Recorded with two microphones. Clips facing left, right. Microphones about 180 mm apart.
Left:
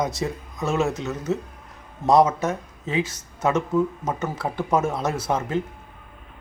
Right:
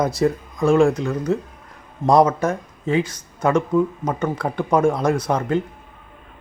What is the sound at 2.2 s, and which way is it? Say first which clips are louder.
Speech: right 3 dB; 25° left (ahead or behind).